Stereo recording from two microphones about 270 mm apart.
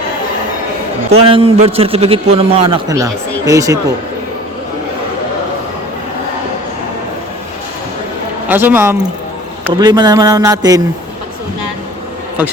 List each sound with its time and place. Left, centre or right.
1.1 s a man's voice: right
8.4 s speech: centre